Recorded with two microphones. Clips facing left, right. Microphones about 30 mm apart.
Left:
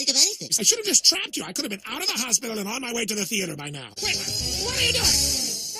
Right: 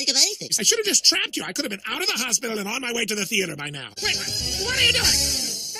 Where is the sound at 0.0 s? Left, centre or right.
Right.